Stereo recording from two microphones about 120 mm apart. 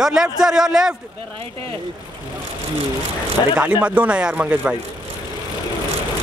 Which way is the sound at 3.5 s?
10° right (ahead or behind).